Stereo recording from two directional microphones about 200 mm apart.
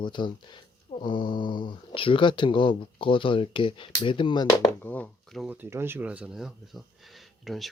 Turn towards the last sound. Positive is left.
turn(degrees=0)  # may be behind; listen again after turning